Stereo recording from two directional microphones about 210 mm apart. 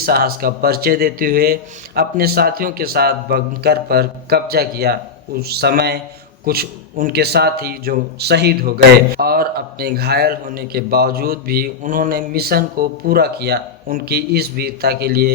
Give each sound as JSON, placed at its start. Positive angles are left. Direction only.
{"t": 0.0, "sound": "a man's voice", "side_deg": -45}